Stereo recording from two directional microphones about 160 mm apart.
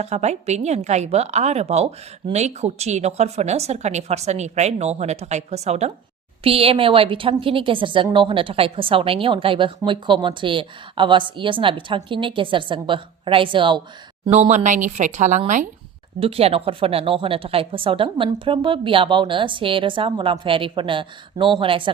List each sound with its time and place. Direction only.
0.0 s a woman's voice: 45° right (ahead or behind)
14.3 s a woman's voice: 45° right (ahead or behind)
16.2 s a woman's voice: 35° right (ahead or behind)